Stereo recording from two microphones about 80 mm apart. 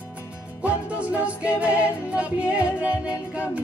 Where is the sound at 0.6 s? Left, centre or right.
Centre.